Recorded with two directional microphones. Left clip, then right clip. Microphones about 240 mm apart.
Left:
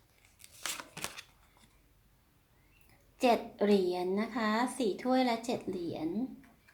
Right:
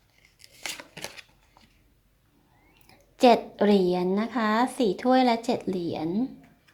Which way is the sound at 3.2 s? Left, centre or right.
Right.